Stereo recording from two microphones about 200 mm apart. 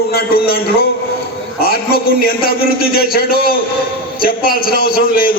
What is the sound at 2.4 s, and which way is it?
A man's voice, 50° left (ahead or behind).